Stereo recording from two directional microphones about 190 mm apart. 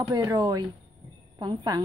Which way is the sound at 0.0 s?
20° right (ahead or behind).